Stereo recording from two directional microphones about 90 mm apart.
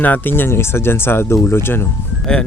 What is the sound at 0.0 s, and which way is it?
Speech, 20° left (ahead or behind).